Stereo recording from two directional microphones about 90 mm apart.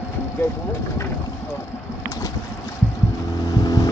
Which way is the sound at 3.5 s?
45° left (ahead or behind).